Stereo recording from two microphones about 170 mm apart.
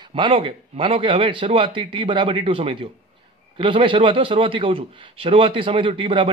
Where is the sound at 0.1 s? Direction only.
30° right (ahead or behind).